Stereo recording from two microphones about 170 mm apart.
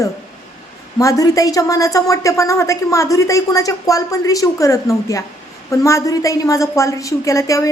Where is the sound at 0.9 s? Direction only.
20° left (ahead or behind).